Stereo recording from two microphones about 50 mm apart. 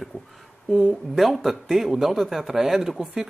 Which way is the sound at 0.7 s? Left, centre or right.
Centre.